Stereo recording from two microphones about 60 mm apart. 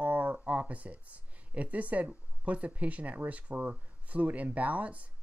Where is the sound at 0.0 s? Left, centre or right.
Right.